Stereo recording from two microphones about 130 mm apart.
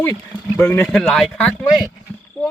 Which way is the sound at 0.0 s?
25° left (ahead or behind).